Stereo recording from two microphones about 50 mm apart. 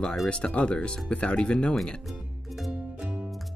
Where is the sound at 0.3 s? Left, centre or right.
Left.